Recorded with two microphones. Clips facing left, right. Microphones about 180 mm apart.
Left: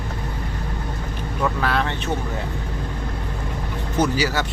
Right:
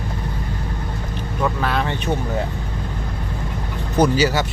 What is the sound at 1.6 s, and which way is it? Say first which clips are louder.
Speech: right 1 dB; 5° right (ahead or behind).